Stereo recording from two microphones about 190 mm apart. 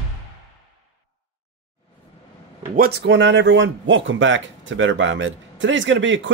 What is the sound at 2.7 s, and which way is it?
Speech, 55° right (ahead or behind).